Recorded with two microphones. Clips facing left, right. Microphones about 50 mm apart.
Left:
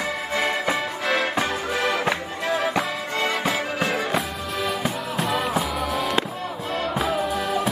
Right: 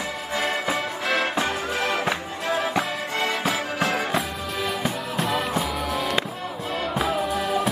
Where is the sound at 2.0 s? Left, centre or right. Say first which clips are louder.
Left 1 dB; centre.